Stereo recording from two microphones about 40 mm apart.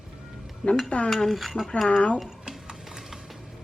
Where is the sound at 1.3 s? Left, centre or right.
Centre.